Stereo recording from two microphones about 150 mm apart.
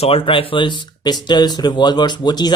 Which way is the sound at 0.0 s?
40° left (ahead or behind).